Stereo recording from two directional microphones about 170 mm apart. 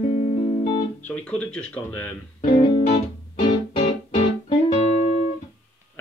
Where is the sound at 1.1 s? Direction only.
5° left (ahead or behind).